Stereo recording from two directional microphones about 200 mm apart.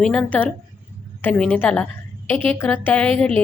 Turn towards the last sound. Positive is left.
turn(degrees=5)  # may be behind; listen again after turning